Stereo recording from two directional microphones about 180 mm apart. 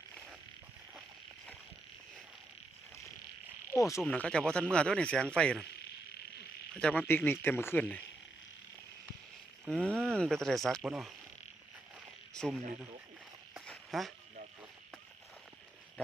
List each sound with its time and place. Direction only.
3.7 s speech: 15° left (ahead or behind)
4.0 s speech: 5° left (ahead or behind)
6.7 s speech: 5° left (ahead or behind)
9.6 s speech: 5° left (ahead or behind)
12.3 s speech: centre (ahead or behind)
13.5 s a sound: centre (ahead or behind)